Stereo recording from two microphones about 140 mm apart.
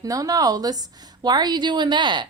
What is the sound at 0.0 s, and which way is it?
A woman's voice, 25° right (ahead or behind).